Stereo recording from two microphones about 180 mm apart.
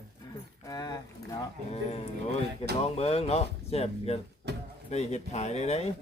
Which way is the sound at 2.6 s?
35° left (ahead or behind).